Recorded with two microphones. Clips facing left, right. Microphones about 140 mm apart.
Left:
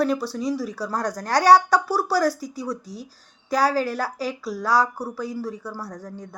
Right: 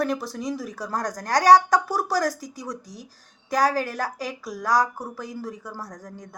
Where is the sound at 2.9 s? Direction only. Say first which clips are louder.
Left 5 dB; 15° right (ahead or behind).